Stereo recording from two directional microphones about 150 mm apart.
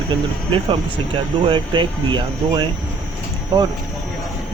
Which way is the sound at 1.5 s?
30° right (ahead or behind).